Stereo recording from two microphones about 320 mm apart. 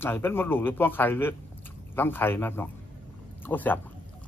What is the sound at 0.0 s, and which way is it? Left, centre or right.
Speech, centre.